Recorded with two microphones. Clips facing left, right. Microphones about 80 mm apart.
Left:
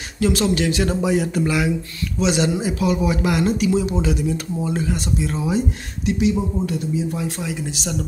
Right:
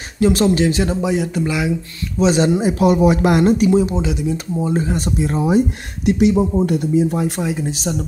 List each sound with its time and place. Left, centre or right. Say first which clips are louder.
0.2 s speech: right 5 dB; right
0.8 s speech: right 1 dB; centre
2.1 s speech: right 5 dB; right
4.0 s speech: right 1 dB; centre
4.6 s speech: right 4 dB; right
4.9 s speech: right 4 dB; right
6.0 s speech: right 5 dB; right
7.4 s speech: right 5 dB; right